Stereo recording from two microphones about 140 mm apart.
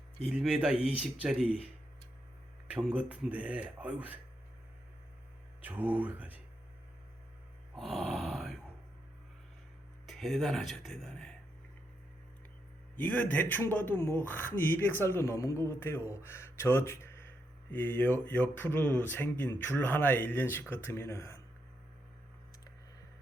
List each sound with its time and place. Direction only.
0.3 s speech: 5° right (ahead or behind)
5.6 s speech: 10° right (ahead or behind)
7.8 s a sound: 5° right (ahead or behind)
10.1 s speech: centre (ahead or behind)
13.0 s speech: 10° left (ahead or behind)